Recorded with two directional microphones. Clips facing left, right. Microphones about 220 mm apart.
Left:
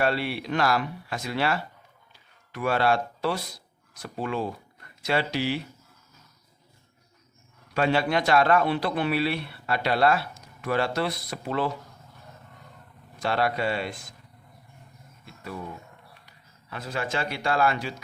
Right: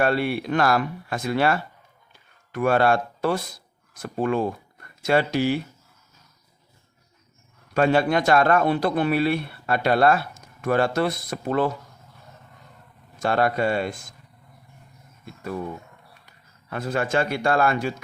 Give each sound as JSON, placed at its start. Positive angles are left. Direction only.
{"t": 0.0, "sound": "a man's voice", "side_deg": -50}
{"t": 7.7, "sound": "a man's voice", "side_deg": -50}
{"t": 13.1, "sound": "a man's voice", "side_deg": -50}
{"t": 16.6, "sound": "a man's voice", "side_deg": -50}